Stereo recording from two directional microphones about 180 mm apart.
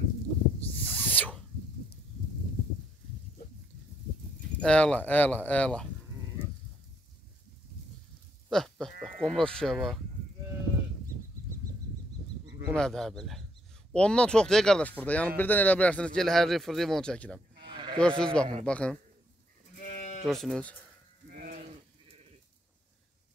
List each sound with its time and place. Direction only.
0.7 s owl: 10° left (ahead or behind)
4.6 s speech: 5° left (ahead or behind)
8.5 s sheep: centre (ahead or behind)
9.0 s speech: 5° left (ahead or behind)
12.4 s a sound: 20° right (ahead or behind)
12.7 s speech: 5° left (ahead or behind)
17.6 s sheep: 25° right (ahead or behind)
17.9 s speech: 5° left (ahead or behind)
19.8 s sheep: 60° left (ahead or behind)
20.2 s speech: centre (ahead or behind)
21.3 s sheep: 50° right (ahead or behind)